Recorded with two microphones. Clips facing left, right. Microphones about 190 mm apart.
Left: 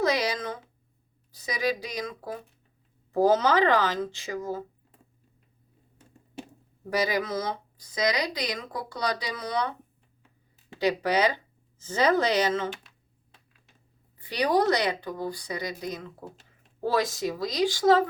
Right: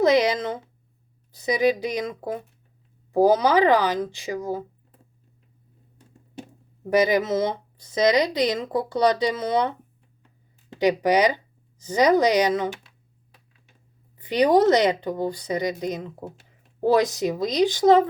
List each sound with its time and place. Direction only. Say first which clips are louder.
0.0 s speech: right 7 dB; 20° right (ahead or behind)
6.9 s speech: right 7 dB; 20° right (ahead or behind)
10.8 s speech: right 5 dB; 15° right (ahead or behind)
14.2 s speech: right 6 dB; 20° right (ahead or behind)